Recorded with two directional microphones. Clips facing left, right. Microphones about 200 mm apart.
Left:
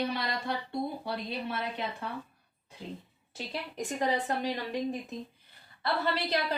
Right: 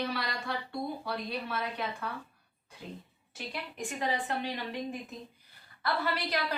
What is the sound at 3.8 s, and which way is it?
Speech, 40° left (ahead or behind).